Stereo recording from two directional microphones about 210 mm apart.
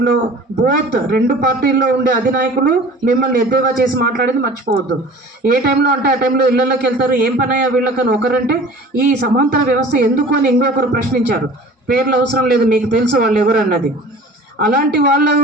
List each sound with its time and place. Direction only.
0.6 s a man's voice: 45° right (ahead or behind)